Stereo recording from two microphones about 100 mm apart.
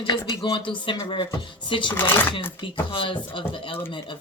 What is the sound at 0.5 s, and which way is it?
Speech, 55° left (ahead or behind).